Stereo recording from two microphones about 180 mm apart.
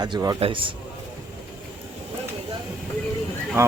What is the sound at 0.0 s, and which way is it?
Speech, 20° right (ahead or behind).